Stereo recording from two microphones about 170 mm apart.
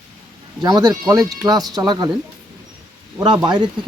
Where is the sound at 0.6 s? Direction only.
20° right (ahead or behind).